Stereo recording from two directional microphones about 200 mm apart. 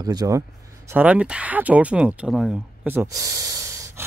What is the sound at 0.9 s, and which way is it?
Speech, 5° right (ahead or behind).